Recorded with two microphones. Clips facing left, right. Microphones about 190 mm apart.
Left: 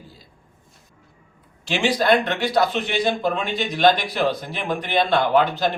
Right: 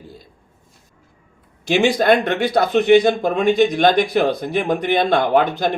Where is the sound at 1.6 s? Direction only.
50° right (ahead or behind).